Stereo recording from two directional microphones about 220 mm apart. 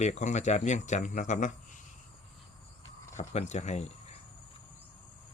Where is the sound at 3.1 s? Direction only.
30° left (ahead or behind).